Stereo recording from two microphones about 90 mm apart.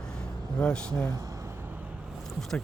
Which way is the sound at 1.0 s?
45° right (ahead or behind).